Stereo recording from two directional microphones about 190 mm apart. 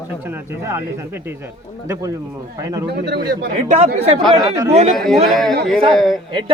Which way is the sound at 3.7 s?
35° right (ahead or behind).